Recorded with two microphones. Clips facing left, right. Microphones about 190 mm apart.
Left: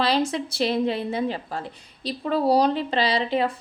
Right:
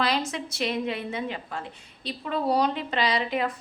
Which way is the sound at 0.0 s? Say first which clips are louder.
Left 4 dB; 30° left (ahead or behind).